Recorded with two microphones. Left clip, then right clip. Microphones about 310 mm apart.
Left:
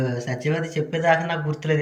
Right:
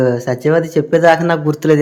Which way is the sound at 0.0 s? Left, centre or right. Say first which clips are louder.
Right 12 dB; centre.